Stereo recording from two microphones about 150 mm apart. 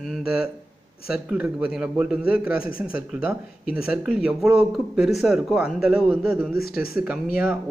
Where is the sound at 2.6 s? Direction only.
70° left (ahead or behind).